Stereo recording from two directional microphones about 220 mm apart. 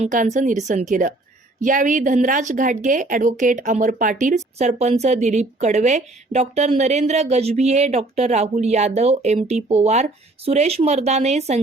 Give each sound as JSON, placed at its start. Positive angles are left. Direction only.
{"t": 0.0, "sound": "a woman's voice", "side_deg": -35}